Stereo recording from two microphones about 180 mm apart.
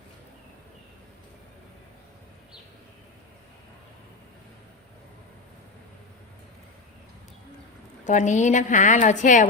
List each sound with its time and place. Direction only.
8.0 s a woman's voice: 40° left (ahead or behind)